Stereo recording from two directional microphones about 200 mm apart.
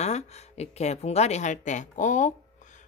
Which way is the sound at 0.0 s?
35° left (ahead or behind).